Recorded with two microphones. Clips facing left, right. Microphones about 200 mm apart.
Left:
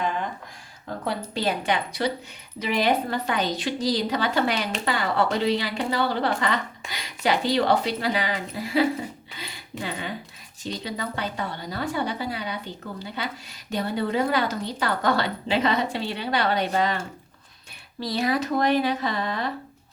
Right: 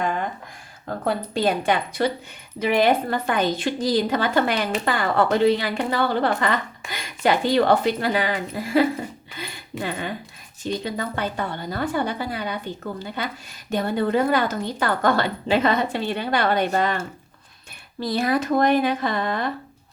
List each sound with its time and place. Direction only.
1.0 s a woman's voice: 50° right (ahead or behind)
18.0 s a woman's voice: 50° right (ahead or behind)